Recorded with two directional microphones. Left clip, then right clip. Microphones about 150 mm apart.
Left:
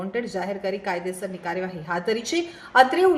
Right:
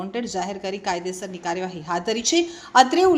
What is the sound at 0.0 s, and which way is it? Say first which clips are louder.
A woman's voice: right 1 dB; 35° right (ahead or behind).